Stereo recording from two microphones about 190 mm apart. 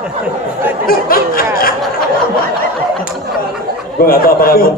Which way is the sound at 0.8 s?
50° left (ahead or behind).